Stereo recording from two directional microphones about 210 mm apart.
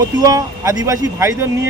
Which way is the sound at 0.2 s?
15° right (ahead or behind).